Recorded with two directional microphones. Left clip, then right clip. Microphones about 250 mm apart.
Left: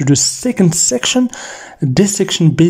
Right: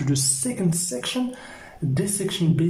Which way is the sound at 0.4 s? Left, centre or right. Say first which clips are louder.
Left 12 dB; left.